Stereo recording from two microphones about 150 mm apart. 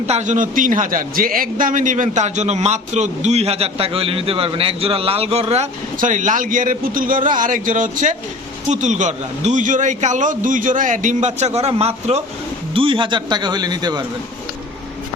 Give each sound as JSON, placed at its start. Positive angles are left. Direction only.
{"t": 0.1, "sound": "a man's voice", "side_deg": -55}
{"t": 6.0, "sound": "a man's voice", "side_deg": -55}